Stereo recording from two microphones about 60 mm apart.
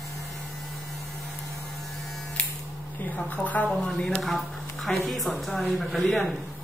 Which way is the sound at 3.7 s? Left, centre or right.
Centre.